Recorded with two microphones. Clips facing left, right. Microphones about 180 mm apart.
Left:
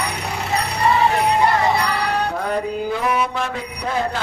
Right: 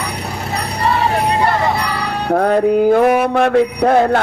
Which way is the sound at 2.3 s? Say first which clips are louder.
Right 10 dB; 55° right (ahead or behind).